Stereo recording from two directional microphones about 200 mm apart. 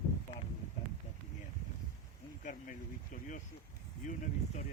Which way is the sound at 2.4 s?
40° left (ahead or behind).